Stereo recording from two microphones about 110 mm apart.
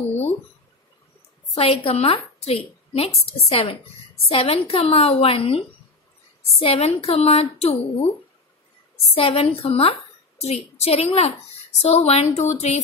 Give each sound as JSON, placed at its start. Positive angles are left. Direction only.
{"t": 1.5, "sound": "a woman's voice", "side_deg": 55}
{"t": 9.1, "sound": "a woman's voice", "side_deg": 60}